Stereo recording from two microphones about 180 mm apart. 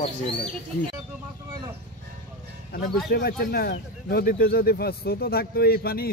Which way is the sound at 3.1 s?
60° left (ahead or behind).